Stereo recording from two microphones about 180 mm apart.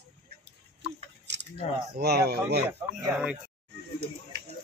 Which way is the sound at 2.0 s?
65° right (ahead or behind).